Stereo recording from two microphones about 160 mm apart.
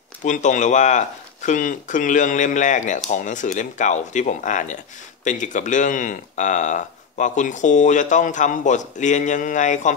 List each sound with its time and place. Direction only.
0.2 s speech: 50° left (ahead or behind)